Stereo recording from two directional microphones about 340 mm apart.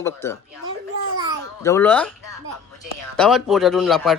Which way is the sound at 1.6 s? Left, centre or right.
Centre.